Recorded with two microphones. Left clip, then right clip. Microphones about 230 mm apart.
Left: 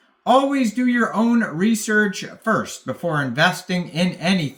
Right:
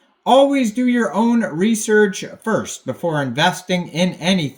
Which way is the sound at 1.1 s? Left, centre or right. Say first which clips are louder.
Right 2 dB; left.